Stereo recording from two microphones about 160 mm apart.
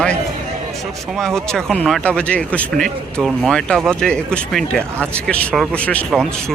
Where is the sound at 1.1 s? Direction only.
5° left (ahead or behind).